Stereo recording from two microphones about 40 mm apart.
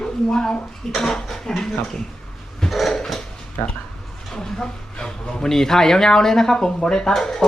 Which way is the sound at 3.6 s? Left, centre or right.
Left.